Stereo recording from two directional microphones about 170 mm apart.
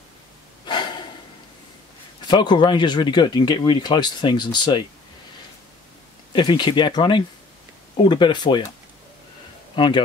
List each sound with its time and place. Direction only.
0.7 s snort: 25° left (ahead or behind)
2.2 s speech: 25° left (ahead or behind)
6.3 s speech: 30° left (ahead or behind)
9.8 s speech: 25° left (ahead or behind)